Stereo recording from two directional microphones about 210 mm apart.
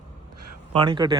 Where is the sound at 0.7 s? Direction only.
20° right (ahead or behind).